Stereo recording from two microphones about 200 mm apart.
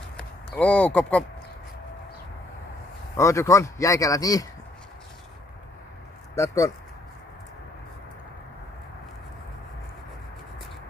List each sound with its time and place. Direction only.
0.5 s a man's voice: 5° left (ahead or behind)
3.2 s a man's voice: 15° left (ahead or behind)
6.3 s a man's voice: 15° left (ahead or behind)